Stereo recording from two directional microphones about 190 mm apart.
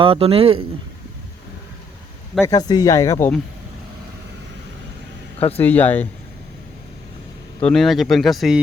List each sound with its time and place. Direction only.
0.0 s speech: 30° right (ahead or behind)
2.4 s speech: 20° left (ahead or behind)
5.5 s speech: 10° left (ahead or behind)
7.6 s speech: centre (ahead or behind)